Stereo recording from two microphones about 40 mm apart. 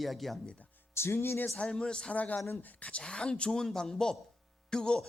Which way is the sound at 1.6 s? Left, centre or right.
Left.